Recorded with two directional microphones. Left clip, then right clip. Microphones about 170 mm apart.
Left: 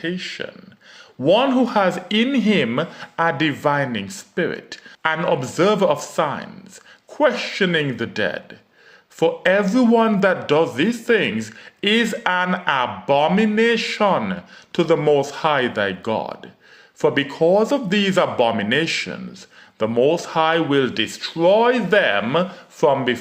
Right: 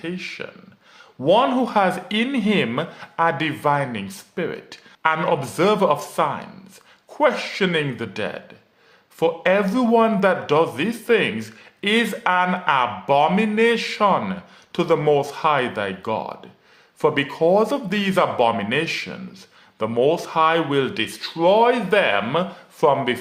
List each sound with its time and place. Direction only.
0.0 s speech: 20° left (ahead or behind)